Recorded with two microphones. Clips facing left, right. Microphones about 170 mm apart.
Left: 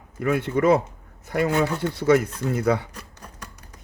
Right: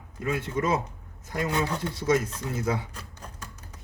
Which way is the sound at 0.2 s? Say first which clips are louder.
Left 7 dB; 65° left (ahead or behind).